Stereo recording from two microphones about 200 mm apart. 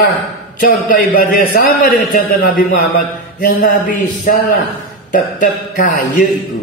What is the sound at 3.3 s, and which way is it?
A man's voice, 40° left (ahead or behind).